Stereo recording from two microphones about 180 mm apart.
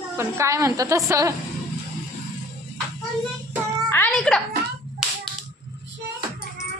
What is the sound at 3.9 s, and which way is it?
Music, 5° left (ahead or behind).